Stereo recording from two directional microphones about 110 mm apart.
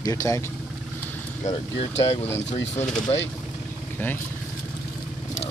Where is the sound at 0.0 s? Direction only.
30° left (ahead or behind).